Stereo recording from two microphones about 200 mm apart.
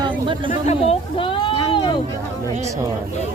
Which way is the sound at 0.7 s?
30° left (ahead or behind).